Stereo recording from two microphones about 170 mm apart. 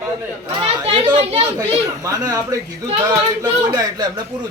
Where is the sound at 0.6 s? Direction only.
30° right (ahead or behind).